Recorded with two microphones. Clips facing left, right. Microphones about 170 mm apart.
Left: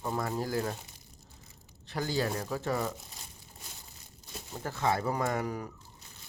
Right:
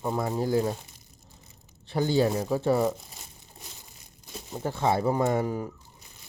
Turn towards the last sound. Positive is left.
turn(degrees=-25)  # may be behind; listen again after turning